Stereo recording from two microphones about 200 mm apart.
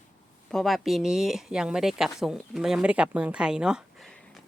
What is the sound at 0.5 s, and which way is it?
Speech, centre (ahead or behind).